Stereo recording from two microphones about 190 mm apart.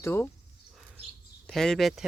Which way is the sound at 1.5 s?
Centre (ahead or behind).